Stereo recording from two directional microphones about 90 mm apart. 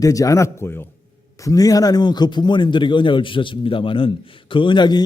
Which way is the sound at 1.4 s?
40° left (ahead or behind).